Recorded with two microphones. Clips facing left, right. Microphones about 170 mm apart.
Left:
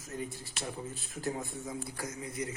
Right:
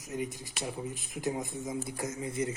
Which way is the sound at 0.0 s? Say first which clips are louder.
Right 4 dB; 15° right (ahead or behind).